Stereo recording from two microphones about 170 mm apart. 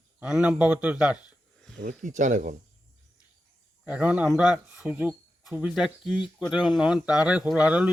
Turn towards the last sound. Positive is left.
turn(degrees=-5)  # may be behind; listen again after turning